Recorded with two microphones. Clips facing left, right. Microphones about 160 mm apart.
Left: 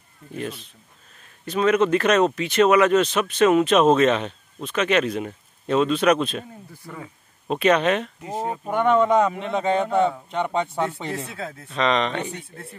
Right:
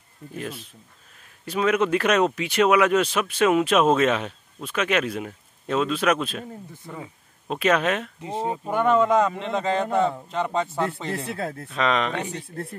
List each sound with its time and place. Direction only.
0.4 s a man's voice: 5° right (ahead or behind)
6.7 s speech: 20° right (ahead or behind)
7.4 s a man's voice: centre (ahead or behind)